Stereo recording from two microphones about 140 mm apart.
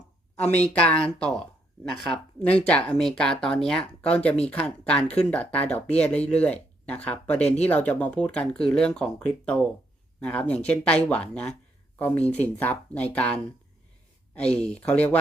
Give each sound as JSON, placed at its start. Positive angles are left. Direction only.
{"t": 0.7, "sound": "speech", "side_deg": 10}
{"t": 2.4, "sound": "speech", "side_deg": 10}
{"t": 7.4, "sound": "speech", "side_deg": 50}
{"t": 7.9, "sound": "speech", "side_deg": 10}
{"t": 14.5, "sound": "speech", "side_deg": 10}